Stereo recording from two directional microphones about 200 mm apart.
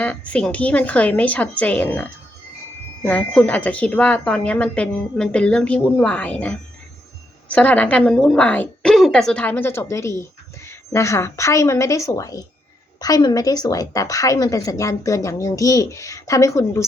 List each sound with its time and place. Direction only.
0.0 s a woman's voice: 5° left (ahead or behind)